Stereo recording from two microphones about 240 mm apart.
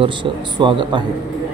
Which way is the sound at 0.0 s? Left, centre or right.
Centre.